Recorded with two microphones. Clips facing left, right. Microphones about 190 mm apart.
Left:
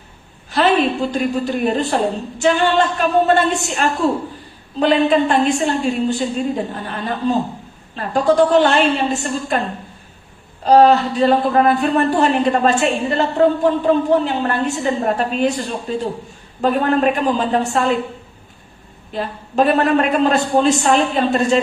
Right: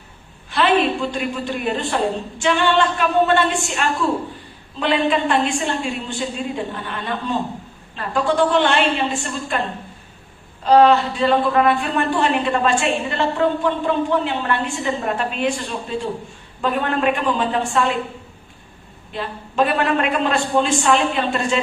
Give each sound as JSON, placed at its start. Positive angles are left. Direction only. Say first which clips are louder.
{"t": 0.5, "sound": "a man's voice", "louder": "left 2 dB", "side_deg": 40}
{"t": 19.1, "sound": "a man's voice", "louder": "left 3 dB", "side_deg": 40}